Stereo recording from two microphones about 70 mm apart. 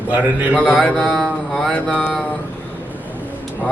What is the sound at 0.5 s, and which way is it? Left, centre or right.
Speech, centre.